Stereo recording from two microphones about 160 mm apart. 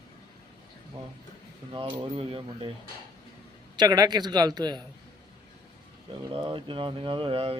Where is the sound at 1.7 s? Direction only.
30° right (ahead or behind).